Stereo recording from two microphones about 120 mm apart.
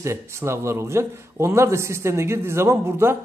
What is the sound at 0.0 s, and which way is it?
A man's voice, 20° right (ahead or behind).